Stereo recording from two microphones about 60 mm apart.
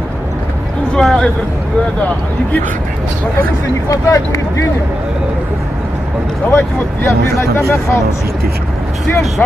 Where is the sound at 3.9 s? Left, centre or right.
Left.